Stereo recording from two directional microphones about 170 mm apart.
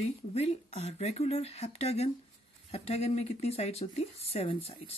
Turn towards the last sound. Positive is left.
turn(degrees=35)  # may be behind; listen again after turning